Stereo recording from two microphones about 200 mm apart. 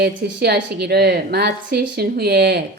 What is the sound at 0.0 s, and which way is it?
A woman's voice, 55° right (ahead or behind).